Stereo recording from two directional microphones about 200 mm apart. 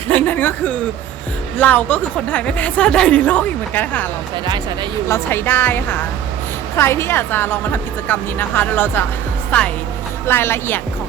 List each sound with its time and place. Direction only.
0.1 s a woman's voice: 10° left (ahead or behind)
4.4 s speech: 20° right (ahead or behind)
5.0 s a woman's voice: 10° left (ahead or behind)